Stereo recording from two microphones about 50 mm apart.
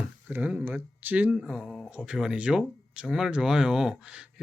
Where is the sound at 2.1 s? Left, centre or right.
Centre.